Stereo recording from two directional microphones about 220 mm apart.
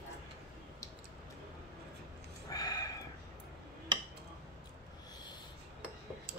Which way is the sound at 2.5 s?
15° left (ahead or behind).